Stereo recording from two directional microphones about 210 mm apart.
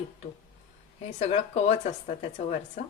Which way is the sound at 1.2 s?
30° left (ahead or behind).